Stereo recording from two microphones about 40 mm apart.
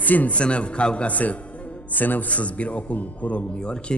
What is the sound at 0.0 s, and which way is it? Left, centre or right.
Speech, left.